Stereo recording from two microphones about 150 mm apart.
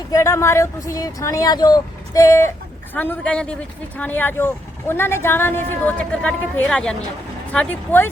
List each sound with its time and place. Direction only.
0.1 s speech: 20° left (ahead or behind)
2.9 s speech: 10° left (ahead or behind)